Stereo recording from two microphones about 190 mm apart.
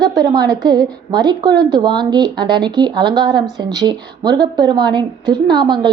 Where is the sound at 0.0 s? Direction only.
20° right (ahead or behind).